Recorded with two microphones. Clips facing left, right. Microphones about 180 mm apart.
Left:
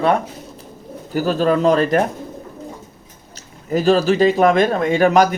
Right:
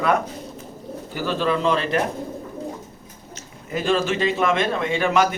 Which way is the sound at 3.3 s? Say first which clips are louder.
Left 8 dB; 40° left (ahead or behind).